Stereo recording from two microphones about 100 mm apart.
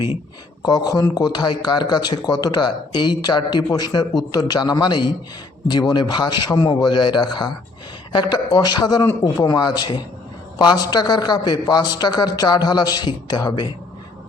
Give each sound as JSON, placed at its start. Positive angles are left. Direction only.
{"t": 0.6, "sound": "a man's voice", "side_deg": 40}